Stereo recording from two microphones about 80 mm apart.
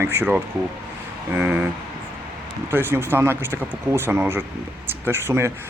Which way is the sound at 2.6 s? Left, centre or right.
Right.